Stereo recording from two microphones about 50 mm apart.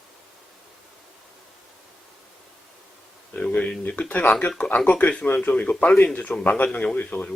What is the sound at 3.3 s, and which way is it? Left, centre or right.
A man's voice, left.